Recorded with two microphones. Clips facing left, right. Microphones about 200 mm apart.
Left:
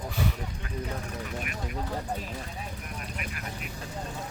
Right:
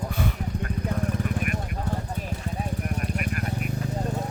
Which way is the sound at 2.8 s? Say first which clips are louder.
Right 9 dB; 50° right (ahead or behind).